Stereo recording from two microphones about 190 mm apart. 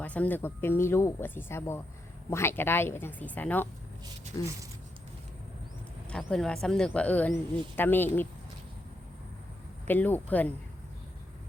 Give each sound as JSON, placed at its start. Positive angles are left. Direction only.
{"t": 0.0, "sound": "speech", "side_deg": 5}
{"t": 6.2, "sound": "speech", "side_deg": 5}
{"t": 9.8, "sound": "speech", "side_deg": 10}